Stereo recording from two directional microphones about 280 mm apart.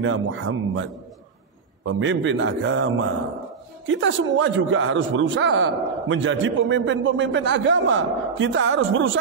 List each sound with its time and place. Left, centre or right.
0.0 s a man's voice: right
1.9 s a man's voice: right